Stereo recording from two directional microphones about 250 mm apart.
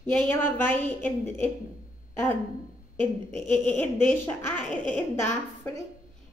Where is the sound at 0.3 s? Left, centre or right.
Centre.